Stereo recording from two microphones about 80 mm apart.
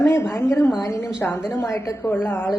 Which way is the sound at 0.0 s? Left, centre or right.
Left.